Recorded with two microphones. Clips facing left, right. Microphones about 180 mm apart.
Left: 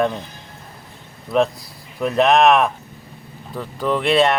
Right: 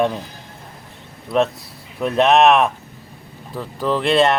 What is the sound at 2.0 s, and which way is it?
Speech, centre (ahead or behind).